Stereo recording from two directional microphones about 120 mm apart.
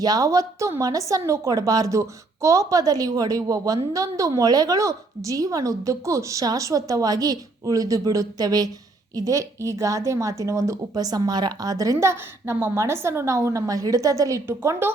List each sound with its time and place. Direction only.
0.0 s a woman's voice: 30° right (ahead or behind)